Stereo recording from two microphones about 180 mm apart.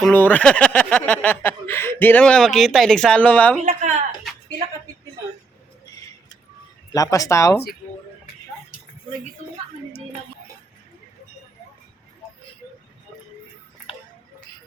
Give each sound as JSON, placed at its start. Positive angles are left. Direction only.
{"t": 0.0, "sound": "speech", "side_deg": 10}
{"t": 3.7, "sound": "speech", "side_deg": -45}
{"t": 6.9, "sound": "speech", "side_deg": 20}